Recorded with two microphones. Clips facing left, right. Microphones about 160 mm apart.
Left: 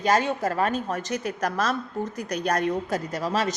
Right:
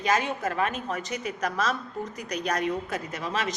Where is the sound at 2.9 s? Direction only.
35° left (ahead or behind).